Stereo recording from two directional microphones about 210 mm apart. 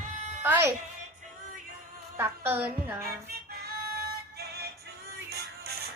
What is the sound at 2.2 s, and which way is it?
Speech, 10° right (ahead or behind).